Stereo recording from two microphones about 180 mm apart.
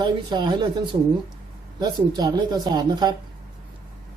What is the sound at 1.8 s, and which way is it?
Speech, 25° right (ahead or behind).